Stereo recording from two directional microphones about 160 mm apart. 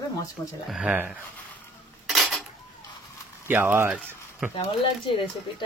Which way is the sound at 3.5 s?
10° right (ahead or behind).